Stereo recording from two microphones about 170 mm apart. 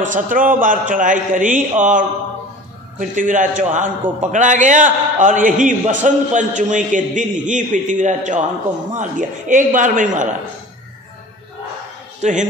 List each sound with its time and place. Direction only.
0.0 s a man's voice: 50° right (ahead or behind)
9.5 s a man's voice: 50° right (ahead or behind)
12.2 s a man's voice: 45° right (ahead or behind)